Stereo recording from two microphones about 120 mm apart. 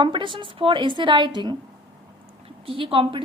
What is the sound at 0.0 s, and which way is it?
Speech, 45° right (ahead or behind).